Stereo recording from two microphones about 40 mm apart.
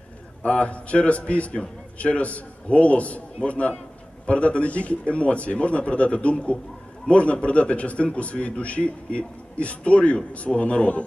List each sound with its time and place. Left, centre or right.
0.4 s a man's voice: left